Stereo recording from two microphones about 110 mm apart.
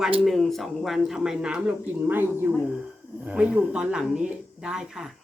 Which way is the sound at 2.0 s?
20° right (ahead or behind).